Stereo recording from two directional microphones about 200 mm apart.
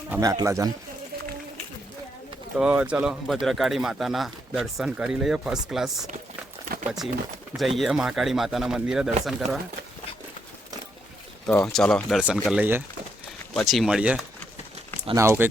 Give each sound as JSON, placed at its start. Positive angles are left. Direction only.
{"t": 0.1, "sound": "speech", "side_deg": -15}
{"t": 2.6, "sound": "speech", "side_deg": -5}
{"t": 7.5, "sound": "speech", "side_deg": 0}
{"t": 11.4, "sound": "speech", "side_deg": 5}
{"t": 15.0, "sound": "speech", "side_deg": -15}